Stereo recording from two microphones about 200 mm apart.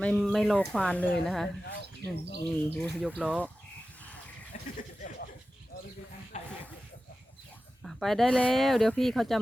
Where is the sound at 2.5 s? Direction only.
10° left (ahead or behind).